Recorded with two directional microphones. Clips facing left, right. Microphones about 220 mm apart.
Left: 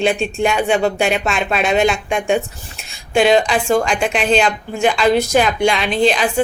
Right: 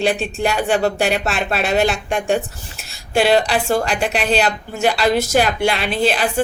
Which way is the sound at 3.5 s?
35° right (ahead or behind).